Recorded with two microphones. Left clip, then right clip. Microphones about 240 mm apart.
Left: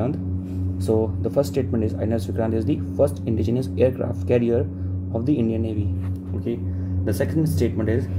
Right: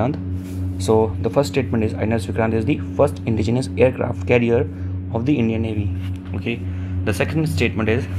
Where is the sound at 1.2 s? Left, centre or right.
Centre.